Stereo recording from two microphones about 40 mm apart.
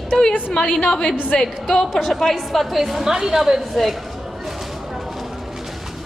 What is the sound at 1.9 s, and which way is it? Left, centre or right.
A woman's voice, centre.